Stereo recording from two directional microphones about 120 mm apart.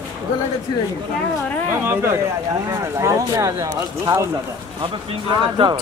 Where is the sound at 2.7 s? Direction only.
25° right (ahead or behind).